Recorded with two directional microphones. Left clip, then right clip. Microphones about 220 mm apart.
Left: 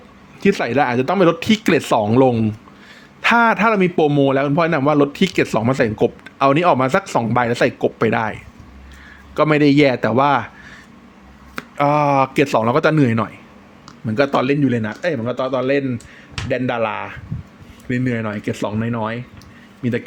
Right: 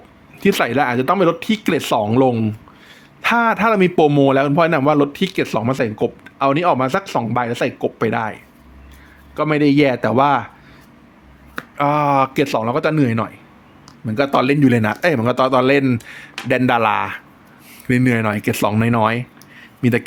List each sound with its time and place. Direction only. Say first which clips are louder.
0.3 s a man's voice: even; 5° right (ahead or behind)
11.8 s a man's voice: even; centre (ahead or behind)
14.6 s speech: right 4 dB; 20° right (ahead or behind)